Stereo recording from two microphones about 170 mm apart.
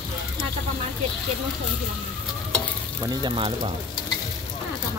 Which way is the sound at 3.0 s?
30° right (ahead or behind).